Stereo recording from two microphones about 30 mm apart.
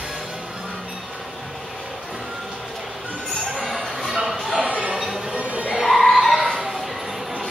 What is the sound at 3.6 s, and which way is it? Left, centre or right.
Music, centre.